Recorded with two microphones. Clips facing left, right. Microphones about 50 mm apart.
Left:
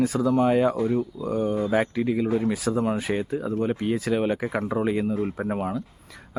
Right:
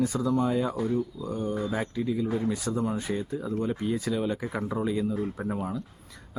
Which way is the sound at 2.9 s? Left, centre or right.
Left.